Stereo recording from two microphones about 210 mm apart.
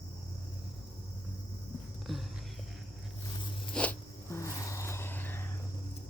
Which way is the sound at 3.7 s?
5° left (ahead or behind).